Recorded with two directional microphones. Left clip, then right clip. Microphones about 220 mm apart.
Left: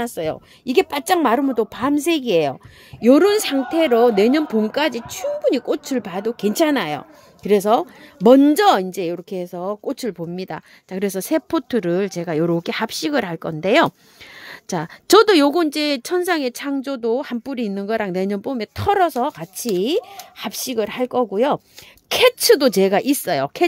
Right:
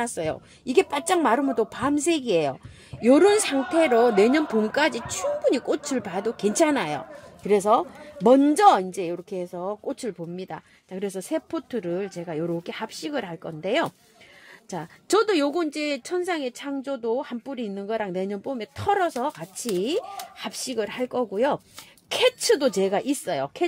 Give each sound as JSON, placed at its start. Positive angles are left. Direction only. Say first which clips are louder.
{"t": 0.0, "sound": "a woman's voice", "louder": "left 4 dB", "side_deg": 35}